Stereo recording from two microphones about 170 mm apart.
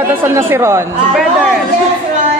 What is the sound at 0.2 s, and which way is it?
Speech, 10° right (ahead or behind).